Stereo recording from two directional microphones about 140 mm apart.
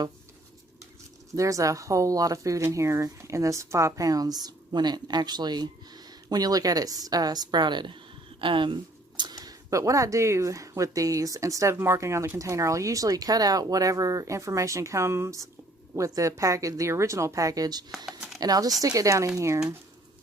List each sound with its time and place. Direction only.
1.4 s speech: 25° right (ahead or behind)
17.9 s a sound: centre (ahead or behind)
18.3 s speech: 25° right (ahead or behind)